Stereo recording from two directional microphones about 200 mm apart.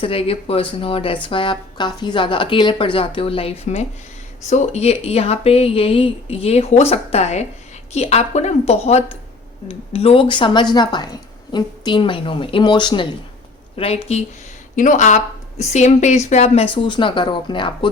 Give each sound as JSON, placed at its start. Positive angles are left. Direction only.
{"t": 0.0, "sound": "speech", "side_deg": 30}
{"t": 16.7, "sound": "speech", "side_deg": 25}